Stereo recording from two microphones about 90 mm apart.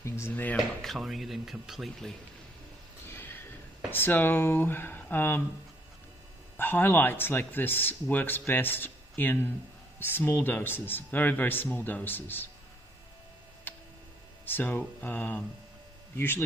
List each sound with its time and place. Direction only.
0.0 s speech: 30° left (ahead or behind)
0.8 s speech: centre (ahead or behind)
3.1 s a sound: 25° left (ahead or behind)
3.9 s speech: 20° left (ahead or behind)
6.5 s speech: 20° left (ahead or behind)
13.7 s tick-tock: 25° left (ahead or behind)
14.4 s speech: 20° left (ahead or behind)